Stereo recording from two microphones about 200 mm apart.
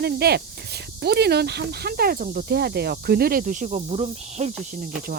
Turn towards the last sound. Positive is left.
turn(degrees=-45)  # may be behind; listen again after turning